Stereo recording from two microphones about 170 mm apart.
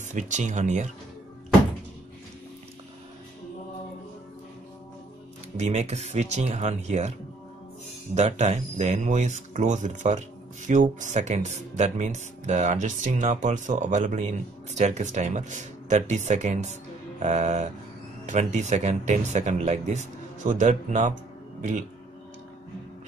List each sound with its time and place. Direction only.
0.0 s speech: 45° right (ahead or behind)
5.6 s speech: 40° right (ahead or behind)